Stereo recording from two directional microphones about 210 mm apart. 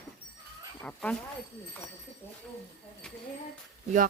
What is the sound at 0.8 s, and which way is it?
Speech, 5° left (ahead or behind).